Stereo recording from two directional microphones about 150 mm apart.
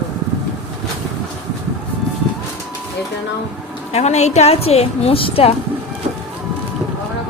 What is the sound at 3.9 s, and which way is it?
A woman's voice, 45° left (ahead or behind).